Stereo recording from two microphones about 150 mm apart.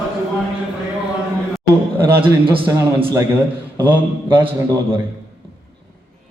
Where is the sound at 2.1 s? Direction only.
15° right (ahead or behind).